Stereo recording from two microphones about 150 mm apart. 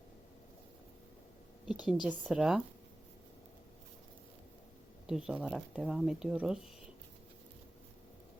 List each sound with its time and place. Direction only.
1.6 s a woman's voice: 5° right (ahead or behind)
5.0 s speech: 5° right (ahead or behind)